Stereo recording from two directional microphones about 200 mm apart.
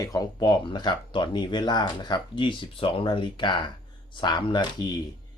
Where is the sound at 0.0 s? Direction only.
20° left (ahead or behind).